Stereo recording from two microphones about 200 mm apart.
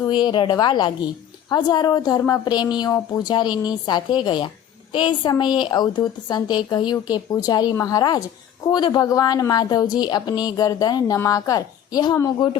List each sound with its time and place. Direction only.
0.1 s a woman's voice: 20° left (ahead or behind)